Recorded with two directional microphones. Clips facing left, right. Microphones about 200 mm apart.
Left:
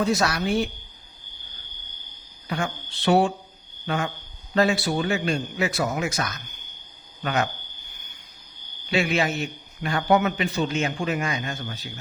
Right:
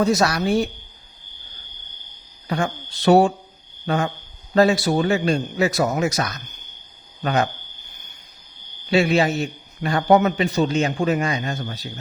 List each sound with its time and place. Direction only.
0.0 s a man's voice: 40° right (ahead or behind)
2.5 s a man's voice: 40° right (ahead or behind)
8.9 s a man's voice: 35° right (ahead or behind)